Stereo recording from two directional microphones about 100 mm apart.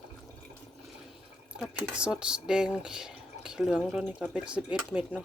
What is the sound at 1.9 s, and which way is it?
Speech, 10° right (ahead or behind).